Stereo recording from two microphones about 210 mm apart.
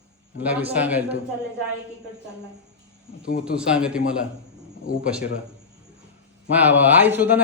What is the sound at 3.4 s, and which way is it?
A man's voice, 5° right (ahead or behind).